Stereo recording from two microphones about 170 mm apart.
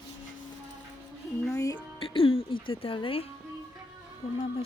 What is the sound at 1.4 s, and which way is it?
Speech, 20° left (ahead or behind).